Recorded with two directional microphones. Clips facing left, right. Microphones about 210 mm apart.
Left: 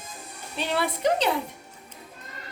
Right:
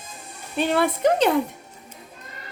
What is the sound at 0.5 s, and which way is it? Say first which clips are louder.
Speech: right 6 dB; 50° right (ahead or behind).